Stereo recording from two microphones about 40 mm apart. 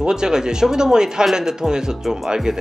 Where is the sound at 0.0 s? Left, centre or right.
Centre.